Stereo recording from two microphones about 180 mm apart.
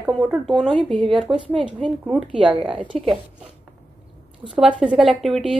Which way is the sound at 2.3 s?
30° right (ahead or behind).